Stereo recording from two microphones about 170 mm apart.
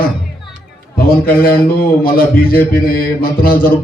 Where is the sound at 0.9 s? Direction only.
60° left (ahead or behind).